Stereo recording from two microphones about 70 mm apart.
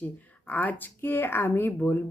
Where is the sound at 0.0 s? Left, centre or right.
Left.